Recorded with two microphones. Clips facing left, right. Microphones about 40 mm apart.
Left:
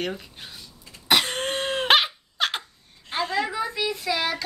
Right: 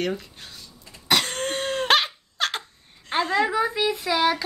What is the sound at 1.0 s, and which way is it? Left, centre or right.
Cough, centre.